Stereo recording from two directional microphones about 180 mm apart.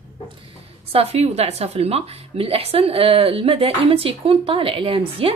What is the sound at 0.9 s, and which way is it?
A woman's voice, 35° right (ahead or behind).